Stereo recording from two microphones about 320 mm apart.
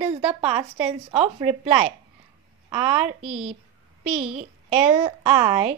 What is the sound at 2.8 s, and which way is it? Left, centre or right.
Speech, centre.